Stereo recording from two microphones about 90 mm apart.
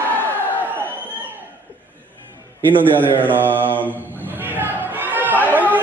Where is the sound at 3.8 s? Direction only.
20° right (ahead or behind).